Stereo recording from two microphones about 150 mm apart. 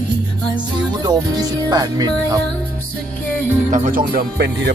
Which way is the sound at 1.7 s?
25° right (ahead or behind).